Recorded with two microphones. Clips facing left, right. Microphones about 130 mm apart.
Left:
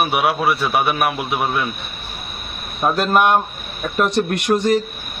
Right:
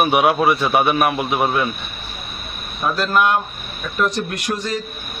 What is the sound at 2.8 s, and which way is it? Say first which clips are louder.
Speech: left 3 dB; 25° left (ahead or behind).